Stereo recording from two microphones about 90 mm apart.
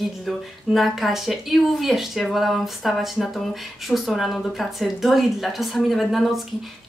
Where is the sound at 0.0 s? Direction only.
Centre (ahead or behind).